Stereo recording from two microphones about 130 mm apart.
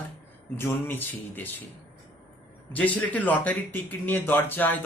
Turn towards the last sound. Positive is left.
turn(degrees=15)  # may be behind; listen again after turning